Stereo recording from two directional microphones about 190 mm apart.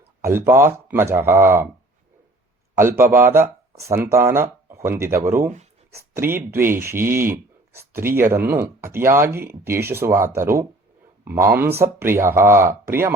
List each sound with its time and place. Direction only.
0.2 s speech: 10° right (ahead or behind)
3.0 s speech: 10° right (ahead or behind)